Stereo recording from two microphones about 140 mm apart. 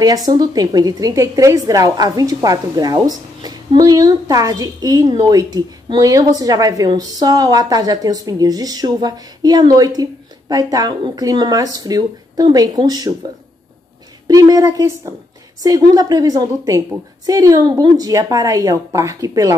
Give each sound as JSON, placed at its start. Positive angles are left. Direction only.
{"t": 0.0, "sound": "a woman's voice", "side_deg": -25}
{"t": 14.2, "sound": "a woman's voice", "side_deg": -30}